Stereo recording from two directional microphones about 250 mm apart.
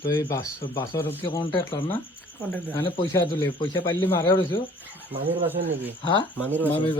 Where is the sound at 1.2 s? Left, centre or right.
Centre.